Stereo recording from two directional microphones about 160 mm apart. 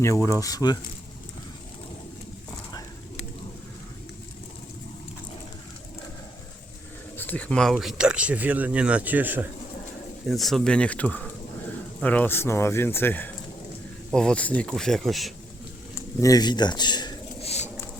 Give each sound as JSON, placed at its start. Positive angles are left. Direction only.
{"t": 0.0, "sound": "speech", "side_deg": 20}
{"t": 7.2, "sound": "speech", "side_deg": 10}
{"t": 10.2, "sound": "speech", "side_deg": 0}
{"t": 16.0, "sound": "speech", "side_deg": 20}
{"t": 17.4, "sound": "patter", "side_deg": 40}